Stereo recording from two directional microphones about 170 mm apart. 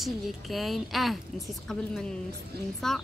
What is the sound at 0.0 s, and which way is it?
A woman's voice, centre (ahead or behind).